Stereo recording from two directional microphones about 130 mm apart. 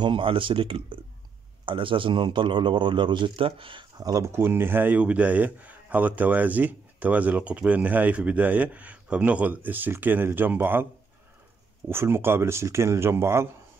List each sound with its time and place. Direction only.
0.0 s a man's voice: 40° right (ahead or behind)
4.0 s speech: 25° right (ahead or behind)
11.9 s speech: 20° right (ahead or behind)